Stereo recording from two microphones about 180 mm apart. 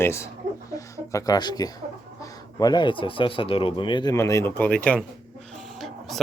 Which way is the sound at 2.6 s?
25° left (ahead or behind).